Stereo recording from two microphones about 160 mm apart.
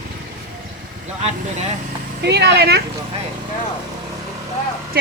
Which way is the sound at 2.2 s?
90° right.